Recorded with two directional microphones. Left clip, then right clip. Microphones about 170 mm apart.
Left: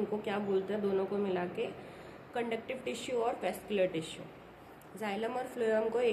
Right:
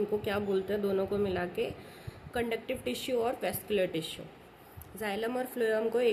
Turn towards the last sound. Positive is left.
turn(degrees=-55)  # may be behind; listen again after turning